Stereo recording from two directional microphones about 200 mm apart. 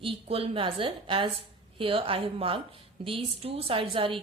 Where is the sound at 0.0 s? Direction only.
30° right (ahead or behind).